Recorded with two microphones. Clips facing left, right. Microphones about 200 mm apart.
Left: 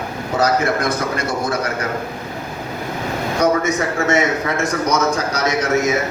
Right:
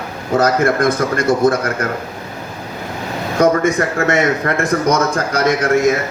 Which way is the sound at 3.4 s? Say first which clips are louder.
Right 4 dB; 55° right (ahead or behind).